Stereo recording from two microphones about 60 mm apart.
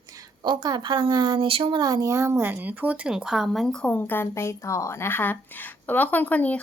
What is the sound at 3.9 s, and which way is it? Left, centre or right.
Speech, left.